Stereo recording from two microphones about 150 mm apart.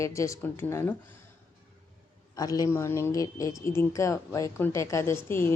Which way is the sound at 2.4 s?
25° left (ahead or behind).